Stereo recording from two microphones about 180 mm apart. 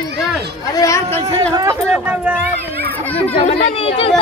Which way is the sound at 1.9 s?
5° right (ahead or behind).